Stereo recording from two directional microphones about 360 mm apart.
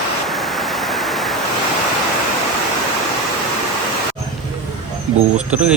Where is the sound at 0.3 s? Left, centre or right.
Centre.